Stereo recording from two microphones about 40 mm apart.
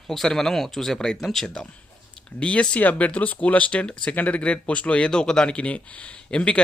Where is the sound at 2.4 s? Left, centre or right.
Left.